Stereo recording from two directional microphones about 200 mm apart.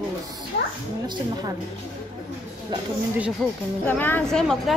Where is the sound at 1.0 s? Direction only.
20° right (ahead or behind).